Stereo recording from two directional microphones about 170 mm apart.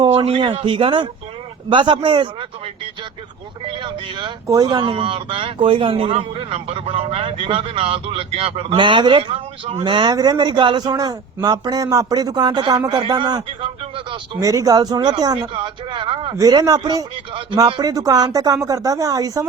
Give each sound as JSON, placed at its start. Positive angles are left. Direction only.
{"t": 0.0, "sound": "speech", "side_deg": -30}
{"t": 3.7, "sound": "speech", "side_deg": -30}